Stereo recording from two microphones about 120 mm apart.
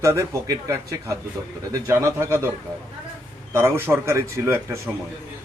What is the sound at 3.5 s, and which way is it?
A man's voice, 20° right (ahead or behind).